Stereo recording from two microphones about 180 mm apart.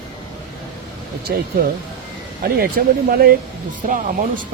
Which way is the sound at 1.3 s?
60° right (ahead or behind).